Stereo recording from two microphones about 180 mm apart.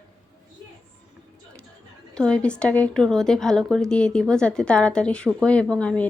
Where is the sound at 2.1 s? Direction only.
5° left (ahead or behind).